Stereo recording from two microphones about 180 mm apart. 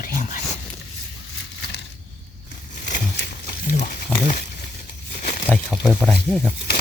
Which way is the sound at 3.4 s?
45° left (ahead or behind).